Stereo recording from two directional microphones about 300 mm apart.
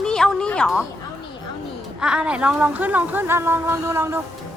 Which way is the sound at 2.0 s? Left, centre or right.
Centre.